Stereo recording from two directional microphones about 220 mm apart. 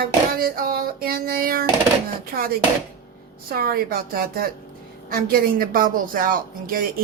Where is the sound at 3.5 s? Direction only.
40° right (ahead or behind).